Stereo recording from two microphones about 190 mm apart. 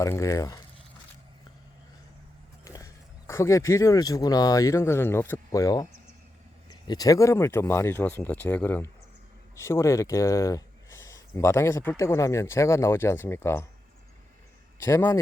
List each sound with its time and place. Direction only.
0.0 s speech: 15° left (ahead or behind)
2.6 s speech: 15° left (ahead or behind)
14.8 s speech: 15° left (ahead or behind)